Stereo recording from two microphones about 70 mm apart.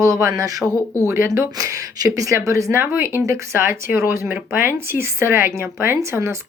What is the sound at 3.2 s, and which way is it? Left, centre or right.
Speech, right.